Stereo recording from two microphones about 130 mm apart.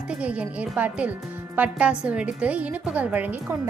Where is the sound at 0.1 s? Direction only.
10° right (ahead or behind).